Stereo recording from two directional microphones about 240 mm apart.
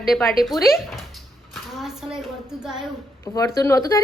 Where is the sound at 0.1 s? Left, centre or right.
Centre.